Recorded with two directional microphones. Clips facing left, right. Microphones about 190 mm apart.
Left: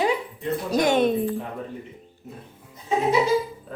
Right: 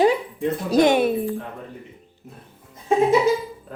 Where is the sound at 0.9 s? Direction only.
10° right (ahead or behind).